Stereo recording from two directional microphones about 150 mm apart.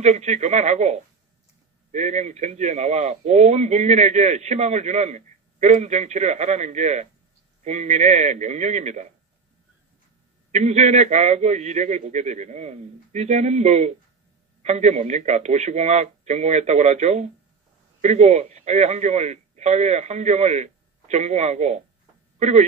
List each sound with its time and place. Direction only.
0.0 s speech: 50° right (ahead or behind)
10.5 s speech: 50° right (ahead or behind)